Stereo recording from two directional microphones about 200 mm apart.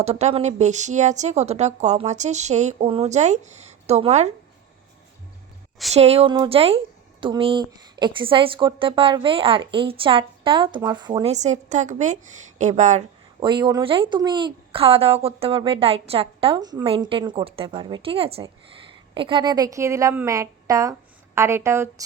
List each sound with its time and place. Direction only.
0.0 s a woman's voice: 35° right (ahead or behind)
5.9 s a woman's voice: 30° right (ahead or behind)
11.3 s a woman's voice: 35° right (ahead or behind)
13.4 s a woman's voice: 20° right (ahead or behind)